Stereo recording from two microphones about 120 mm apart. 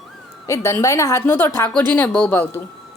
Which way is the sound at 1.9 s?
10° left (ahead or behind).